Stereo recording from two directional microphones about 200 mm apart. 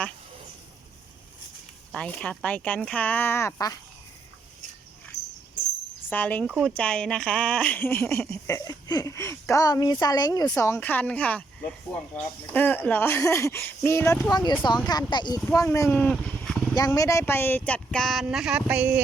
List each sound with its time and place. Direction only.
1.9 s a woman's voice: 5° left (ahead or behind)
6.1 s a woman's voice: 10° left (ahead or behind)
6.5 s speech: 5° right (ahead or behind)
6.7 s a woman's voice: 5° left (ahead or behind)
16.7 s speech: 15° left (ahead or behind); by 19.0 s 5° right (ahead or behind)